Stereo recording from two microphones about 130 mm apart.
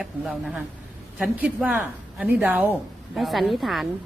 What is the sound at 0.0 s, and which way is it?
A woman's voice, centre (ahead or behind).